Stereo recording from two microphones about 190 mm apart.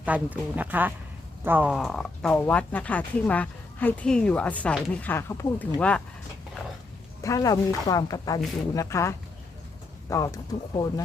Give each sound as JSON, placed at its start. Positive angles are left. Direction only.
{"t": 0.0, "sound": "speech", "side_deg": -10}
{"t": 7.2, "sound": "speech", "side_deg": 15}